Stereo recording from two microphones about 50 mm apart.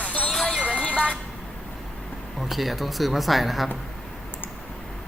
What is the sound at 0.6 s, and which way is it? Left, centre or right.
Music, left.